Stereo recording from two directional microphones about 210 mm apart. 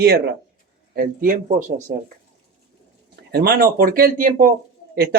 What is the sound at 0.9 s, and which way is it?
Speech, 40° right (ahead or behind).